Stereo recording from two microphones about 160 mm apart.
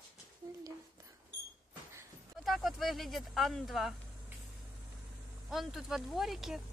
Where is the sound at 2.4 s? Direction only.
Centre (ahead or behind).